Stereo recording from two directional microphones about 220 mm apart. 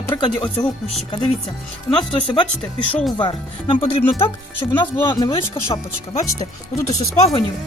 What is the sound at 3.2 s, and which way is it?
Speech, 20° left (ahead or behind).